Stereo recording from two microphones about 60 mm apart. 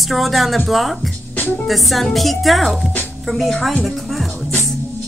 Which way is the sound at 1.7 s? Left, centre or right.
Centre.